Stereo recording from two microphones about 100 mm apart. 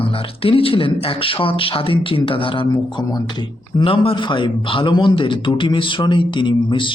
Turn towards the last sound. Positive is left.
turn(degrees=55)  # may be behind; listen again after turning